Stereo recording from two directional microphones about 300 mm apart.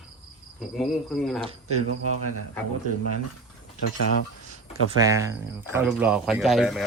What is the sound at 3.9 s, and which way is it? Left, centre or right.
Speech, left.